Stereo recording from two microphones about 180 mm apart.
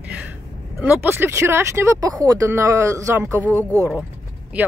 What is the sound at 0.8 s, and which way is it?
Speech, 10° right (ahead or behind).